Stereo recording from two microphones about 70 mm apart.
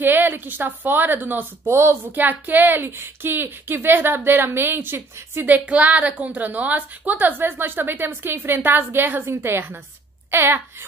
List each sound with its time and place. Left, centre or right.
0.0 s a woman's voice: right
2.1 s speech: right
5.5 s a woman's voice: right